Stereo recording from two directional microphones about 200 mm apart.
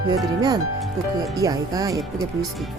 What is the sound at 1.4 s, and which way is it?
Speech, 15° right (ahead or behind).